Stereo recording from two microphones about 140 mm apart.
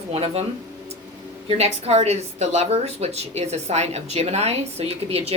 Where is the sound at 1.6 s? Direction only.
45° right (ahead or behind).